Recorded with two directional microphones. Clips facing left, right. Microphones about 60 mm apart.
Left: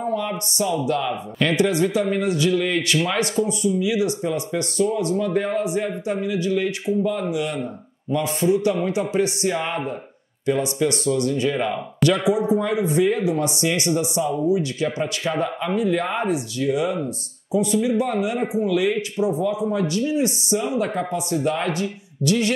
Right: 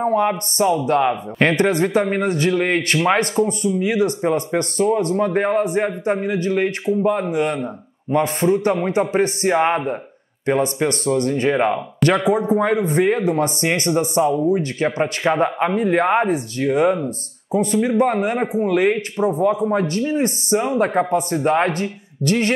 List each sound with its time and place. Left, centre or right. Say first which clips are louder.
0.0 s speech: right 6 dB; right